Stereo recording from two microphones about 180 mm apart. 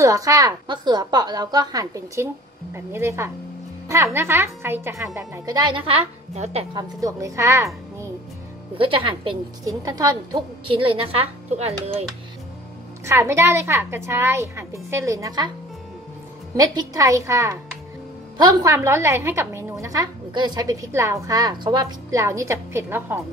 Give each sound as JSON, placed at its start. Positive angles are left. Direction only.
{"t": 0.0, "sound": "a woman's voice", "side_deg": -20}
{"t": 6.3, "sound": "speech", "side_deg": -40}
{"t": 6.7, "sound": "a woman's voice", "side_deg": -20}
{"t": 8.7, "sound": "a woman's voice", "side_deg": -30}
{"t": 13.0, "sound": "a woman's voice", "side_deg": -15}
{"t": 16.5, "sound": "a woman's voice", "side_deg": -20}